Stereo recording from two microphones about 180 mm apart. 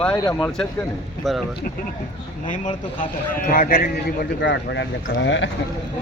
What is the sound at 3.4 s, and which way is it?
Speech, 50° left (ahead or behind).